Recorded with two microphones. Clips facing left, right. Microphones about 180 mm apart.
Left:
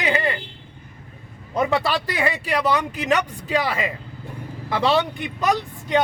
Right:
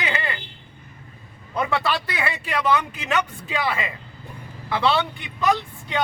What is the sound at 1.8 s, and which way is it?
Speech, 40° left (ahead or behind).